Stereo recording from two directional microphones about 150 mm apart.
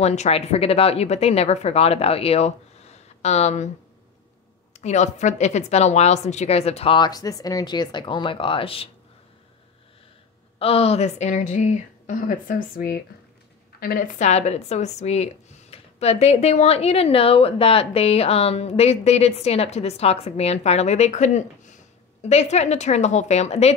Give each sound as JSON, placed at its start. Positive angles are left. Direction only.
{"t": 0.0, "sound": "a woman's voice", "side_deg": 50}
{"t": 4.7, "sound": "a woman's voice", "side_deg": 50}
{"t": 10.6, "sound": "a woman's voice", "side_deg": 40}
{"t": 14.2, "sound": "a woman's voice", "side_deg": 50}